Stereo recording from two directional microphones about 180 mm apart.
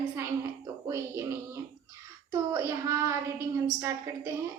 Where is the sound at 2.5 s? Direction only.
15° right (ahead or behind).